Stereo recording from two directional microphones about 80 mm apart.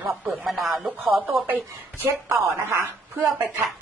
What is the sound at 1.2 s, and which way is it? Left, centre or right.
A woman's voice, right.